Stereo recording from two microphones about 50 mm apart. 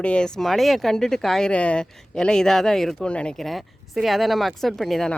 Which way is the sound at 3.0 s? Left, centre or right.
Left.